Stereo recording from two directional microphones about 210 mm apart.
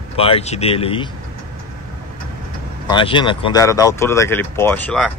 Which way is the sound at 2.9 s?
25° left (ahead or behind).